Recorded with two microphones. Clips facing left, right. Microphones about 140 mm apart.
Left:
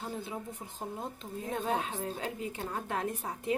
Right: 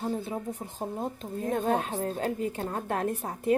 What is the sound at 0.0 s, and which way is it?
Speech, 50° right (ahead or behind).